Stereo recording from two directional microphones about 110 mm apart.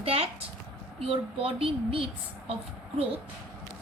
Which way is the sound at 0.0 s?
65° right (ahead or behind).